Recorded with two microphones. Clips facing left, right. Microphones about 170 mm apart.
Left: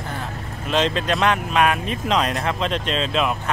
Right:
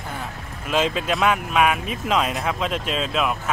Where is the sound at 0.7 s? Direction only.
10° right (ahead or behind).